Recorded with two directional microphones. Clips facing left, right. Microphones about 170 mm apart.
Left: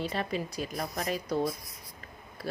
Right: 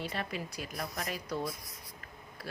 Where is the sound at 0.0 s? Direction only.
30° left (ahead or behind).